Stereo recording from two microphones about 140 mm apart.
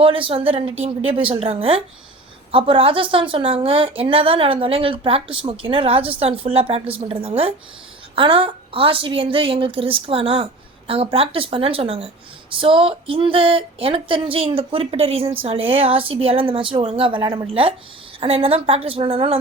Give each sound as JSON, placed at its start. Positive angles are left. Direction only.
{"t": 0.0, "sound": "a woman's voice", "side_deg": -40}